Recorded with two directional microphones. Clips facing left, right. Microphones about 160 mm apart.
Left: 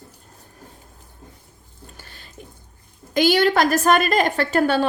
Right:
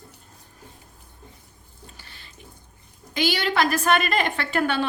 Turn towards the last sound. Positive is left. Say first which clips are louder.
# left 5 dB
turn(degrees=40)  # may be behind; listen again after turning